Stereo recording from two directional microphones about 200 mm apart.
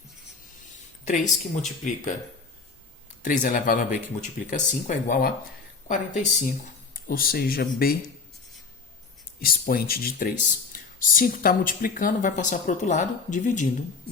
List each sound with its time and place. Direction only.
1.0 s speech: 35° left (ahead or behind)
3.2 s speech: 40° left (ahead or behind)
6.9 s speech: 45° left (ahead or behind)
9.4 s speech: 45° left (ahead or behind)